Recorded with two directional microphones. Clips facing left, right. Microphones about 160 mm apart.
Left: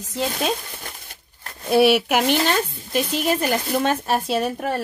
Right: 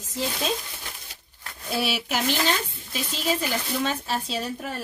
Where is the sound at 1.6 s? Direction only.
60° left (ahead or behind).